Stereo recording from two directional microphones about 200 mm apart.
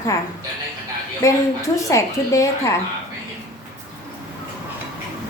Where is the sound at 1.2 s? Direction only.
15° left (ahead or behind).